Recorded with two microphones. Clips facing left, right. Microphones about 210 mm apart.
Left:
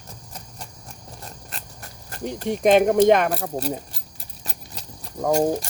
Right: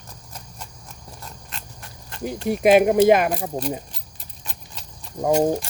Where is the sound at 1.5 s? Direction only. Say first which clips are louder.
Even; 40° left (ahead or behind).